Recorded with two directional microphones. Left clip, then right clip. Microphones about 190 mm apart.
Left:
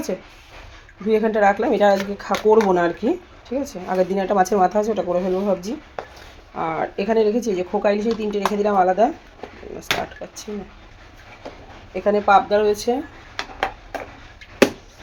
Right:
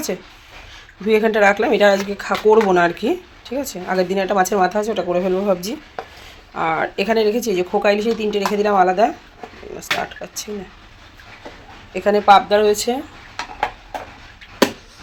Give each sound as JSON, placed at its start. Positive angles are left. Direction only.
{"t": 1.0, "sound": "speech", "side_deg": 0}
{"t": 11.9, "sound": "speech", "side_deg": 0}